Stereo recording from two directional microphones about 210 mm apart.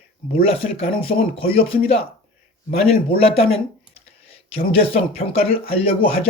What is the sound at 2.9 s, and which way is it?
Speech, 30° left (ahead or behind).